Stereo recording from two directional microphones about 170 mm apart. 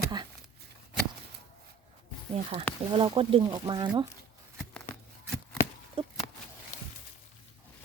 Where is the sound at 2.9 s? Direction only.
30° right (ahead or behind).